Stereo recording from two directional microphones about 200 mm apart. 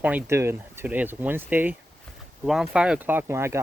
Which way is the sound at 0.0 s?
10° right (ahead or behind).